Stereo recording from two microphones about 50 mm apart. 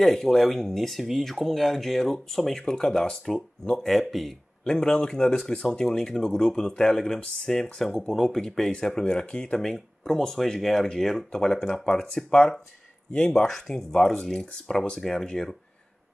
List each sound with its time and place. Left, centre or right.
0.0 s speech: centre
4.1 s speech: centre
4.6 s speech: centre